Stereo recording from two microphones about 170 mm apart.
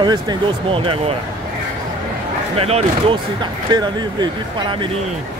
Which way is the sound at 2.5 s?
35° right (ahead or behind).